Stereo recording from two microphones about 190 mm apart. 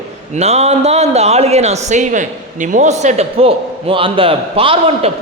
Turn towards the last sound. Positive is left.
turn(degrees=-30)  # may be behind; listen again after turning